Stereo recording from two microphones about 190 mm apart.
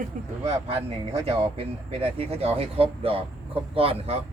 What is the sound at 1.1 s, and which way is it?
Speech, 30° right (ahead or behind).